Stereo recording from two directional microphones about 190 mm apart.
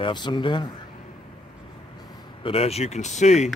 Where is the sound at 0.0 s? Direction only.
25° left (ahead or behind).